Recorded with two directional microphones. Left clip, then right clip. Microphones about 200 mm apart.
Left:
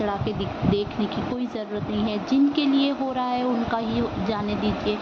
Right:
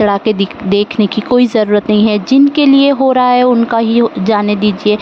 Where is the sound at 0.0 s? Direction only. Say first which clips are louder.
Right 15 dB; 60° right (ahead or behind).